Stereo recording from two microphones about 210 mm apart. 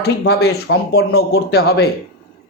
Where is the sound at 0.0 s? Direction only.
50° left (ahead or behind).